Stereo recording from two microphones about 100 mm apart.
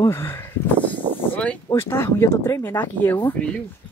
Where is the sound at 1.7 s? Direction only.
25° left (ahead or behind).